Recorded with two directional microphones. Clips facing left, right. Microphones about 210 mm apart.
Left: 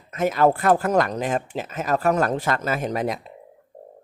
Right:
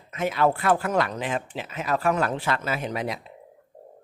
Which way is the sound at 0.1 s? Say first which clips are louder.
Left 4 dB; 45° left (ahead or behind).